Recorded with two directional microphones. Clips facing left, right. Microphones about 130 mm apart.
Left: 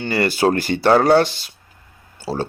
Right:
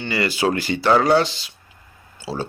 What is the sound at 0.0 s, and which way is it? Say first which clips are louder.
Speech: left 3 dB; 50° left (ahead or behind).